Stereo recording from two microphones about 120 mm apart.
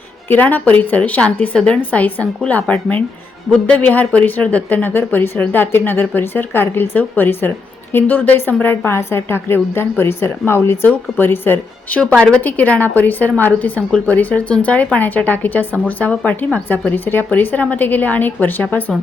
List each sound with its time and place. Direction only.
0.3 s a woman's voice: 15° left (ahead or behind)